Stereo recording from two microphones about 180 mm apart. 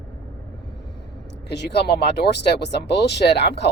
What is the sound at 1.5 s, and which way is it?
Speech, 65° left (ahead or behind).